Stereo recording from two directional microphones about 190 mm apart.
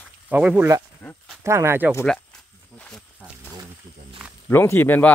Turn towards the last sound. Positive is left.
turn(degrees=10)  # may be behind; listen again after turning